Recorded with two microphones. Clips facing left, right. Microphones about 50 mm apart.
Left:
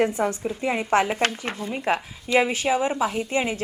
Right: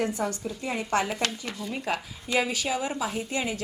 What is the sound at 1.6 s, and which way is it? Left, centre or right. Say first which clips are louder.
A woman's voice: left 6 dB; left.